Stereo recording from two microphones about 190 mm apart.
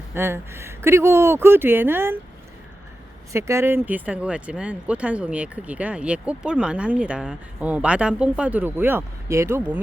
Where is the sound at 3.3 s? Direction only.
15° right (ahead or behind).